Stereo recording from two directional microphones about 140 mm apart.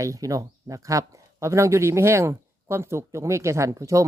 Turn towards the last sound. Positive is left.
turn(degrees=-20)  # may be behind; listen again after turning